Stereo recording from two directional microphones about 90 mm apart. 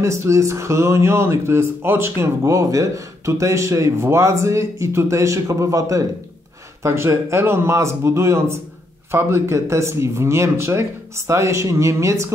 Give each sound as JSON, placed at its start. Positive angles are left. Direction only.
{"t": 0.0, "sound": "speech", "side_deg": -30}